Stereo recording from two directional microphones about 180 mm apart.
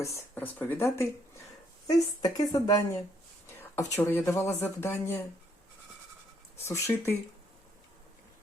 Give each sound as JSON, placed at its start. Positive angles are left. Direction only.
{"t": 0.0, "sound": "speech", "side_deg": 10}
{"t": 6.6, "sound": "speech", "side_deg": 15}